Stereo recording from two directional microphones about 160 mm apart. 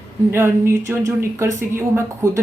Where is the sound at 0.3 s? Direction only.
15° right (ahead or behind).